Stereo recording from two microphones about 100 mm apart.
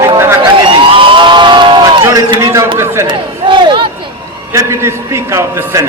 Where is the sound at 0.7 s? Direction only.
60° right (ahead or behind).